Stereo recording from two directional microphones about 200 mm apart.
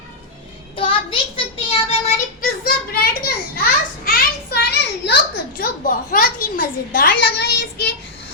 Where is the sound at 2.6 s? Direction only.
50° left (ahead or behind).